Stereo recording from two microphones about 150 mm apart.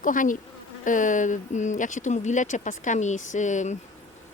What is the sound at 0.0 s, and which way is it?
Speech, 60° left (ahead or behind).